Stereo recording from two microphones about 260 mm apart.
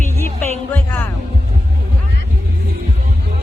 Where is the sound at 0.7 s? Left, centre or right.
Centre.